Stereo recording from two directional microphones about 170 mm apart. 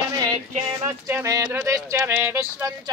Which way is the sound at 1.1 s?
15° right (ahead or behind).